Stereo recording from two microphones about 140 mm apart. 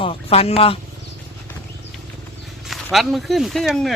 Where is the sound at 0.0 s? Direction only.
45° left (ahead or behind).